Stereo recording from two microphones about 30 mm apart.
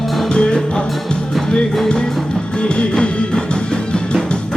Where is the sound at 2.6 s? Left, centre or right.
Left.